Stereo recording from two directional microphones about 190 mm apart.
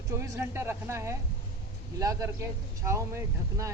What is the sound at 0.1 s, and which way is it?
Speech, 10° right (ahead or behind).